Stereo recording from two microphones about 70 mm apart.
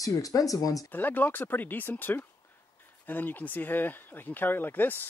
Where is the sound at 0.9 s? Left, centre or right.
Left.